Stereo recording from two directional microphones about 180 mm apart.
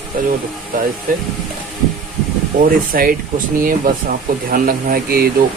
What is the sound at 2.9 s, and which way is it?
Speech, 50° right (ahead or behind).